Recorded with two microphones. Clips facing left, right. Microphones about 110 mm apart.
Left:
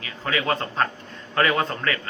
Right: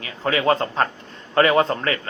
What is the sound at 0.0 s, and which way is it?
A man's voice, 35° right (ahead or behind).